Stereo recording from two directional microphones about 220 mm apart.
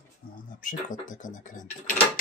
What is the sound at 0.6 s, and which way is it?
Speech, 35° left (ahead or behind).